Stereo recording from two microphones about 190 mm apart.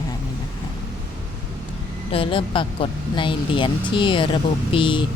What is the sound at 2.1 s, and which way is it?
Speech, 30° left (ahead or behind).